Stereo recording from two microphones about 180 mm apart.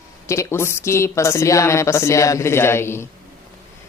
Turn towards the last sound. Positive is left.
turn(degrees=15)  # may be behind; listen again after turning